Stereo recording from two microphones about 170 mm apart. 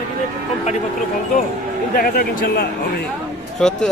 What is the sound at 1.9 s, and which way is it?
Speech, 60° left (ahead or behind).